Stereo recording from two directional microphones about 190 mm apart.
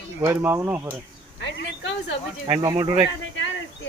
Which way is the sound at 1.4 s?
65° left (ahead or behind).